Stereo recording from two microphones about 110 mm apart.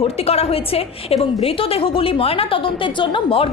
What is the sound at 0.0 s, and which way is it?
A woman's voice, 65° left (ahead or behind).